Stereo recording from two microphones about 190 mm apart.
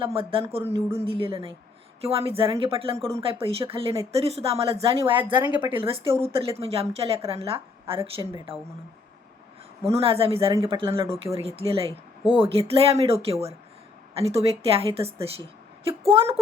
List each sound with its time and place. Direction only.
0.0 s a woman's voice: 30° right (ahead or behind)
0.6 s speech: 10° right (ahead or behind)
1.0 s a woman's voice: 30° right (ahead or behind)
5.4 s speech: 10° right (ahead or behind)
5.7 s a woman's voice: 30° right (ahead or behind)
9.9 s a woman's voice: 30° right (ahead or behind)